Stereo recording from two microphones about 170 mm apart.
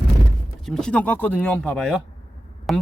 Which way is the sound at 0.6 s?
5° left (ahead or behind).